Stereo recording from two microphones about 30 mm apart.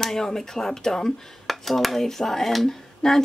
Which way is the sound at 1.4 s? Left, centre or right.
Centre.